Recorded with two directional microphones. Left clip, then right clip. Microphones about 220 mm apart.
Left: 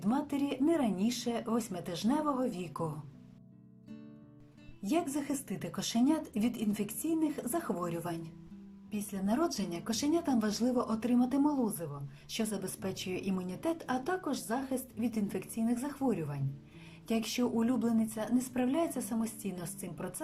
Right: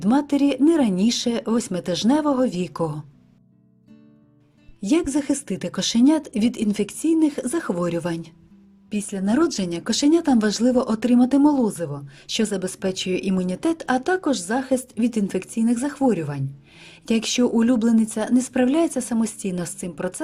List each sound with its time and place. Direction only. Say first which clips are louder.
0.0 s speech: right 14 dB; 45° right (ahead or behind)
4.8 s speech: right 12 dB; 45° right (ahead or behind)